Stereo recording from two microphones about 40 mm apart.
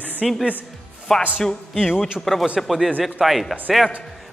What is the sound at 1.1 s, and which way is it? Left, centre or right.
Speech, centre.